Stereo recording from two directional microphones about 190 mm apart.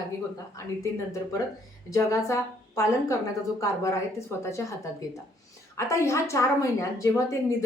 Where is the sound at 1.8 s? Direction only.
15° left (ahead or behind).